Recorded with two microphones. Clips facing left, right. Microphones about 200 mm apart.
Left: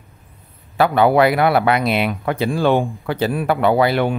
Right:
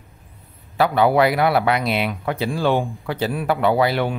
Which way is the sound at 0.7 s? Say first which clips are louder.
Left 2 dB; 55° left (ahead or behind).